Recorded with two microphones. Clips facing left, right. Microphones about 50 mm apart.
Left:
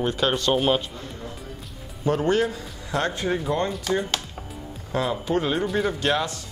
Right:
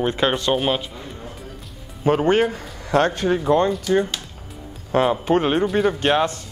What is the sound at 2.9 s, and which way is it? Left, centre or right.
Speech, right.